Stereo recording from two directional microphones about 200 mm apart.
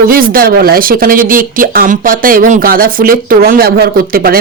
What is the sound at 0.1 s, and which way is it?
Speech, 45° right (ahead or behind).